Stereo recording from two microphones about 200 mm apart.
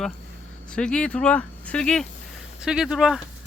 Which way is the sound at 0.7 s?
5° left (ahead or behind).